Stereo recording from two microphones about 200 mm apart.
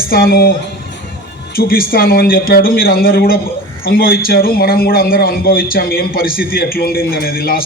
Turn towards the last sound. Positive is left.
turn(degrees=50)  # may be behind; listen again after turning